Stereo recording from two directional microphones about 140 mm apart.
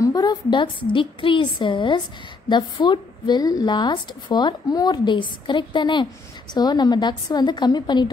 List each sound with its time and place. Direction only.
0.0 s a woman's voice: 25° left (ahead or behind)